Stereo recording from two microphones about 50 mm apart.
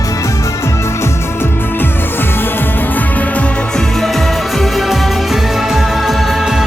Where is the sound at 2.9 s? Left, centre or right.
Left.